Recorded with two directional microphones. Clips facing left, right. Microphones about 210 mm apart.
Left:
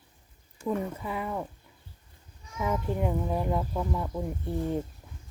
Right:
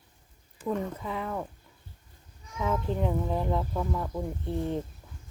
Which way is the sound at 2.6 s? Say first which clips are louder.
Even; 10° left (ahead or behind).